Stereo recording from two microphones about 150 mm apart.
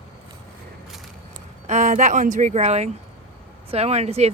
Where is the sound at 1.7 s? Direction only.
55° right (ahead or behind).